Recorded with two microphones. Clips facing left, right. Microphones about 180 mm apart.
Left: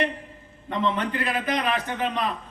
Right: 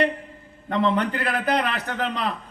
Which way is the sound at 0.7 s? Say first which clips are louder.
Right 3 dB; 70° right (ahead or behind).